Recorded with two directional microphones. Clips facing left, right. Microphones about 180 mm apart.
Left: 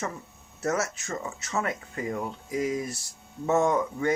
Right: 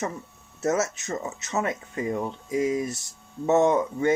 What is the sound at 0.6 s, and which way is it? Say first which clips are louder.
Speech: right 3 dB; 20° right (ahead or behind).